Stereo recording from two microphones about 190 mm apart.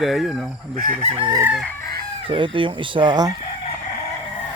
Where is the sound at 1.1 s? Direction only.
25° right (ahead or behind).